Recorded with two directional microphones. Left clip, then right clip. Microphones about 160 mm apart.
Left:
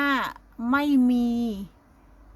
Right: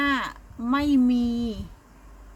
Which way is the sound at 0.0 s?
30° left (ahead or behind).